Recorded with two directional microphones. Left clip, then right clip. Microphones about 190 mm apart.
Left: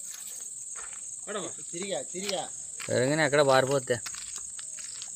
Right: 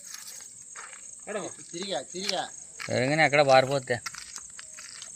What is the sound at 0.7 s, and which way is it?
Insect, 40° left (ahead or behind).